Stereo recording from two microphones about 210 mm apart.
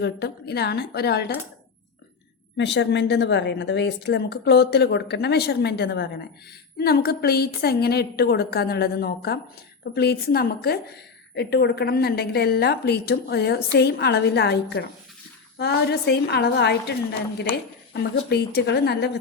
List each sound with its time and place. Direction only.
0.0 s a woman's voice: 50° left (ahead or behind)
2.6 s a woman's voice: 55° left (ahead or behind)